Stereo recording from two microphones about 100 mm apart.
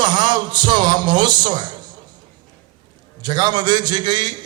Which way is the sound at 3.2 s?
45° right (ahead or behind).